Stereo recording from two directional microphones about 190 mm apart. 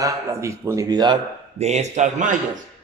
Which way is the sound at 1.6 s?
35° right (ahead or behind).